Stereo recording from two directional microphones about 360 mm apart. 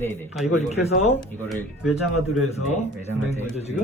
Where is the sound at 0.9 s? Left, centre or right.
Centre.